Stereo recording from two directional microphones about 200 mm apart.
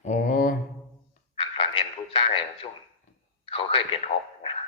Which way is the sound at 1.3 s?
25° left (ahead or behind).